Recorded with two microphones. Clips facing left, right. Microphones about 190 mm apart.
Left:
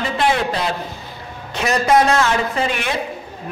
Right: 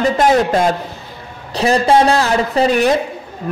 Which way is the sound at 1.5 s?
30° right (ahead or behind).